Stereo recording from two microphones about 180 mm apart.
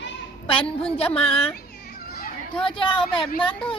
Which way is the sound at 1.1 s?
30° left (ahead or behind).